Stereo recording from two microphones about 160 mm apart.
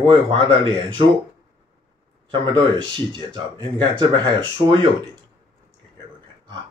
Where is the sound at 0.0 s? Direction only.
30° right (ahead or behind).